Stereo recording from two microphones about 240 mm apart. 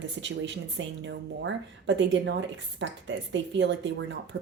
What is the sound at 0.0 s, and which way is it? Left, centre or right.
Speech, right.